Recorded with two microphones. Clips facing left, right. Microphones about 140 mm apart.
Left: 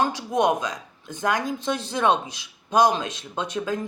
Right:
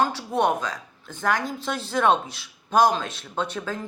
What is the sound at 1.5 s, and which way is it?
Speech, 15° left (ahead or behind).